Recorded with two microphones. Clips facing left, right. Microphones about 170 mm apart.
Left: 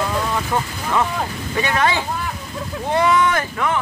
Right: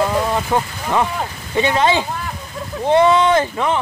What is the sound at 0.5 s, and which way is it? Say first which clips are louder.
Speech: right 3 dB; 20° right (ahead or behind).